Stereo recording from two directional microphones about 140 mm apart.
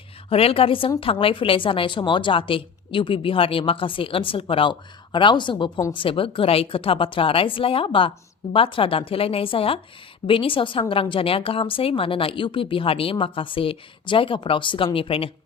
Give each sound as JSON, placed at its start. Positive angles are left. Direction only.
{"t": 0.3, "sound": "a woman's voice", "side_deg": 40}